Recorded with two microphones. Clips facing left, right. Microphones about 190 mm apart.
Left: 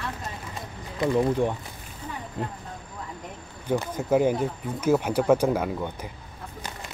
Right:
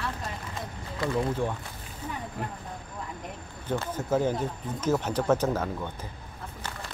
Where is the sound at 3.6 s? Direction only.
15° left (ahead or behind).